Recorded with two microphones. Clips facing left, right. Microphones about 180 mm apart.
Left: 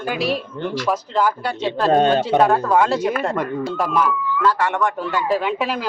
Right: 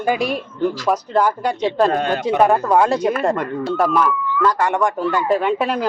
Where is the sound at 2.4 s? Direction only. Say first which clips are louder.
Right 4 dB; 10° right (ahead or behind); by 3.9 s 5° left (ahead or behind).